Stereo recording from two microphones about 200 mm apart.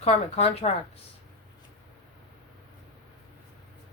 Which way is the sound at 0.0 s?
30° left (ahead or behind).